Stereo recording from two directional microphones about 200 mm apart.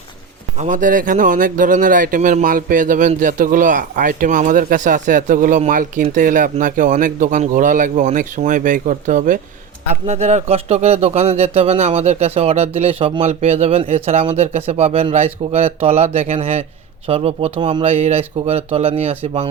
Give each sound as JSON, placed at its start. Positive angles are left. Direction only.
{"t": 0.6, "sound": "speech", "side_deg": -40}